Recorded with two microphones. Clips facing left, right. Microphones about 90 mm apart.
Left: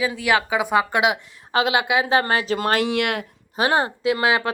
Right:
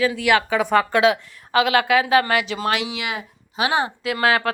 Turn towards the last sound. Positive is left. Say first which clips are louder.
# even
turn(degrees=20)  # may be behind; listen again after turning